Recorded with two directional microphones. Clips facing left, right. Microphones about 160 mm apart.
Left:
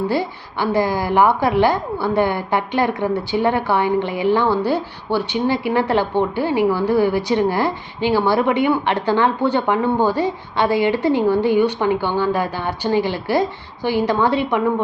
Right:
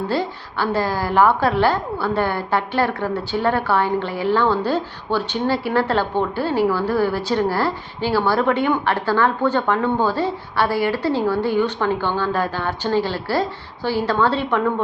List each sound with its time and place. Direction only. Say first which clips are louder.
0.1 s a woman's voice: left 1 dB; 15° left (ahead or behind)